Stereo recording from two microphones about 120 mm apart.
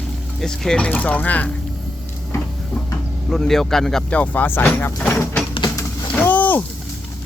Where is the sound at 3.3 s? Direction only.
5° left (ahead or behind).